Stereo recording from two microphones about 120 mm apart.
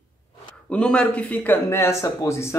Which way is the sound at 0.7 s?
10° left (ahead or behind).